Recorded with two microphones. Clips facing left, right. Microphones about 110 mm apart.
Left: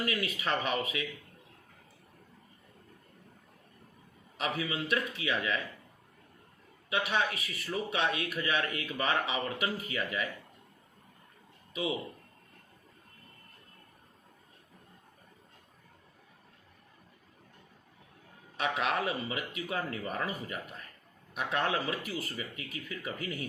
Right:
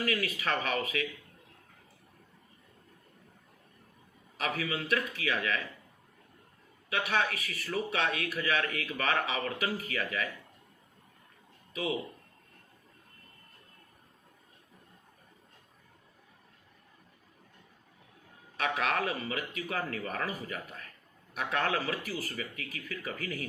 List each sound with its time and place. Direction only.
0.0 s speech: 20° left (ahead or behind)
4.4 s speech: 25° left (ahead or behind)
6.9 s speech: 20° left (ahead or behind)
11.7 s speech: 25° left (ahead or behind)
18.5 s speech: 25° left (ahead or behind)
21.3 s speech: 25° left (ahead or behind)